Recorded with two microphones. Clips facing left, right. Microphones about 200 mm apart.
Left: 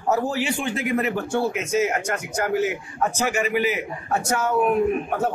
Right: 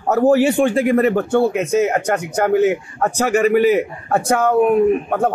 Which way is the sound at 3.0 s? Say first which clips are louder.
Right 6 dB; 50° right (ahead or behind).